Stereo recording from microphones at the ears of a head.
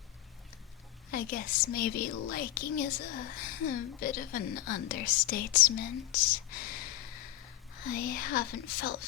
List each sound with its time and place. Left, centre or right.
1.1 s a child's voice: left